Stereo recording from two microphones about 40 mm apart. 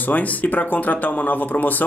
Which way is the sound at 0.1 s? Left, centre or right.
Left.